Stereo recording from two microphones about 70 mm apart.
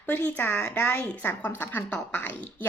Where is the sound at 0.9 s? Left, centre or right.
Left.